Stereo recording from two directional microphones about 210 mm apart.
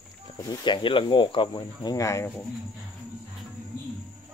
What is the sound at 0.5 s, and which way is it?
Speech, 20° left (ahead or behind).